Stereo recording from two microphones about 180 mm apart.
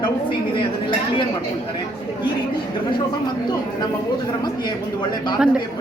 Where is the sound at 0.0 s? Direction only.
25° left (ahead or behind).